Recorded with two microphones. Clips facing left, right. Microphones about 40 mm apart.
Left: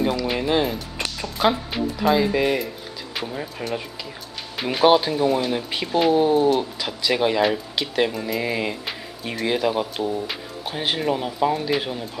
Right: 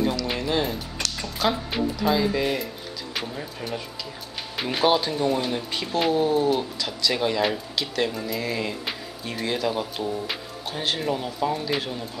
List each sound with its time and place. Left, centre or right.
0.0 s speech: left
4.6 s speech: centre
4.8 s speech: centre